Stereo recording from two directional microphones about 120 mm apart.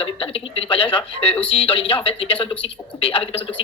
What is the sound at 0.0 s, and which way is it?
Speech, 50° left (ahead or behind).